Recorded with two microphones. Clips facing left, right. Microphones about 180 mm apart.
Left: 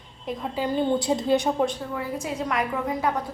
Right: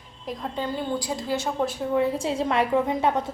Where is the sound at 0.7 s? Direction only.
20° left (ahead or behind).